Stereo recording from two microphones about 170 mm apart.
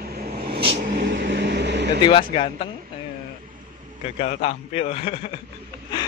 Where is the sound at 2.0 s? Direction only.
30° left (ahead or behind).